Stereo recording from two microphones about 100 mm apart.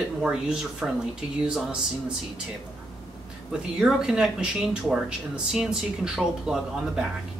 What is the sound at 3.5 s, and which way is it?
Speech, 5° right (ahead or behind).